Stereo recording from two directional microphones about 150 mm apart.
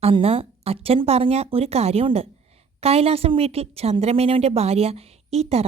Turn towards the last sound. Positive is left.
turn(degrees=-45)  # may be behind; listen again after turning